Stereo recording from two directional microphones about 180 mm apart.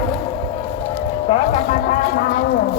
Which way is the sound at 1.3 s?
35° left (ahead or behind).